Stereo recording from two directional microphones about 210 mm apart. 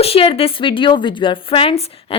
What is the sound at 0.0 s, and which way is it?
A woman's voice, 25° left (ahead or behind).